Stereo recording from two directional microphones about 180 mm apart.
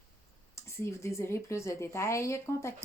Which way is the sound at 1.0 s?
15° left (ahead or behind).